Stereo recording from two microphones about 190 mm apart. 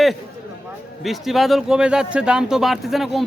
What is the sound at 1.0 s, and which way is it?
Speech, centre (ahead or behind).